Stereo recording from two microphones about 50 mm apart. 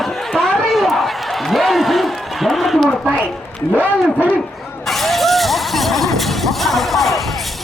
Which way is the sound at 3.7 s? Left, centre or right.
Left.